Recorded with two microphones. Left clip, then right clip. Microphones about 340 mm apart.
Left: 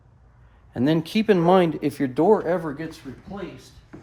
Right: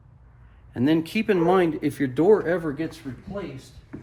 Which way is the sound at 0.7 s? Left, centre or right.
Left.